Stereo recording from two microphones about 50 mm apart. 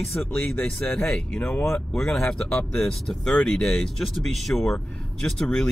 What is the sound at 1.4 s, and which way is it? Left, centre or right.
Speech, left.